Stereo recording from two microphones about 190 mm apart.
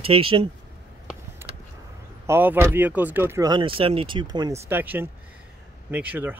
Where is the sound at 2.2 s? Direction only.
10° right (ahead or behind).